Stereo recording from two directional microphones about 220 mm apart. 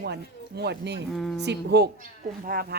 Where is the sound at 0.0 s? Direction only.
50° right (ahead or behind).